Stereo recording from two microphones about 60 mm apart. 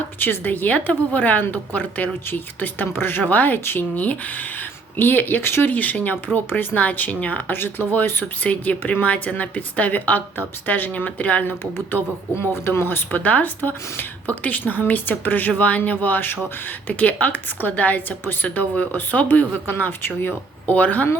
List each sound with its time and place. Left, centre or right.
0.2 s speech: left
13.1 s speech: left
20.7 s speech: left